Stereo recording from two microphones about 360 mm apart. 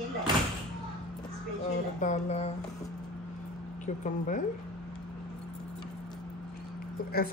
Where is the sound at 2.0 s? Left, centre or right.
Centre.